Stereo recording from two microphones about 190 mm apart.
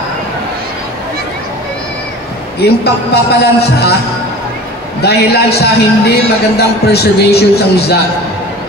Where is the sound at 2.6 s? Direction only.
60° left (ahead or behind).